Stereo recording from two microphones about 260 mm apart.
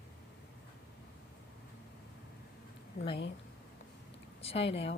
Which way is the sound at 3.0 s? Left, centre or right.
Left.